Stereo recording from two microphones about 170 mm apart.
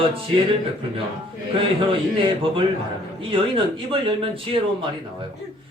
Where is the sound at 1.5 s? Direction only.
30° right (ahead or behind).